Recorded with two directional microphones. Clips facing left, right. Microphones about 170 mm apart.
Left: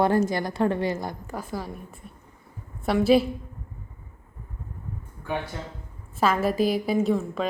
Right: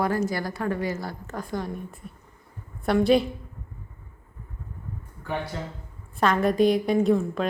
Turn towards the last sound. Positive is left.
turn(degrees=0)  # may be behind; listen again after turning